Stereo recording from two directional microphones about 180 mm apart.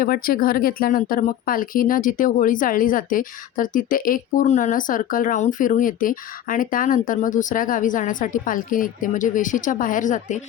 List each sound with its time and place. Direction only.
0.0 s speech: 55° left (ahead or behind)